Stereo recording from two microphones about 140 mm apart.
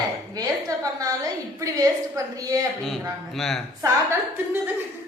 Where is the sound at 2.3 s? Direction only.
25° right (ahead or behind).